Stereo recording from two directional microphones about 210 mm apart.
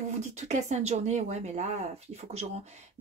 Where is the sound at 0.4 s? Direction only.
35° right (ahead or behind).